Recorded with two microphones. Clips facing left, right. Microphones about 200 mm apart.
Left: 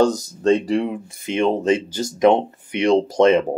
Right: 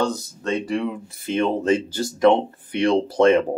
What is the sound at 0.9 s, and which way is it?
Speech, 10° left (ahead or behind).